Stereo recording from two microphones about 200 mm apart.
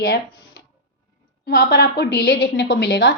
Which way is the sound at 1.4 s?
55° left (ahead or behind).